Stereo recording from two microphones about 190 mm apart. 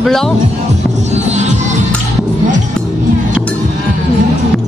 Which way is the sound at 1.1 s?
35° right (ahead or behind).